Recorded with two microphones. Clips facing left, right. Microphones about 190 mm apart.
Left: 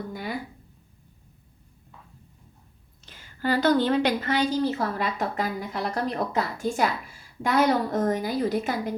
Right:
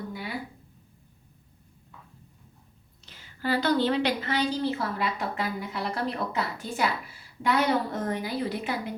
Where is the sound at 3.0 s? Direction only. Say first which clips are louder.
Left 3 dB; 50° left (ahead or behind).